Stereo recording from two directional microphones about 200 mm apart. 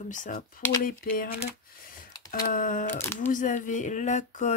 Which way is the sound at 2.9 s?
10° left (ahead or behind).